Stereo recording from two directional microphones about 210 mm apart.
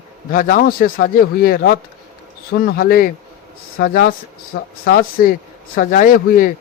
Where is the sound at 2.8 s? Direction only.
45° left (ahead or behind).